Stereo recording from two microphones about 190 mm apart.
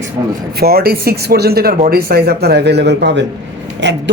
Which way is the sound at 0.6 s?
55° right (ahead or behind).